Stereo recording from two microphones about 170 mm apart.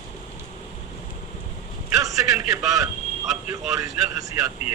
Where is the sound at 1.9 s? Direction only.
20° right (ahead or behind).